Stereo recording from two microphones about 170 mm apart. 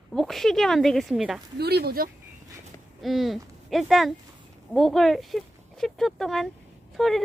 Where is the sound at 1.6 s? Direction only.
70° right (ahead or behind).